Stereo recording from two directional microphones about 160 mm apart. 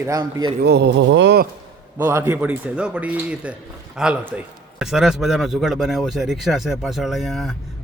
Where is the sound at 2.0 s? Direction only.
15° right (ahead or behind).